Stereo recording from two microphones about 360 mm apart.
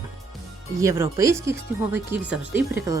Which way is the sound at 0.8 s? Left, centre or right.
Centre.